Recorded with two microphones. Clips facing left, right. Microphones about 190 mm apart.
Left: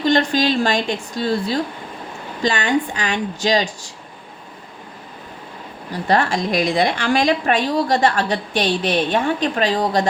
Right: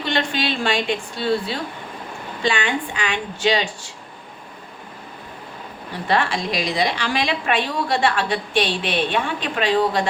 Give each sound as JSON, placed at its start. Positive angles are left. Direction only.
{"t": 0.0, "sound": "a woman's voice", "side_deg": 40}
{"t": 5.9, "sound": "a woman's voice", "side_deg": 40}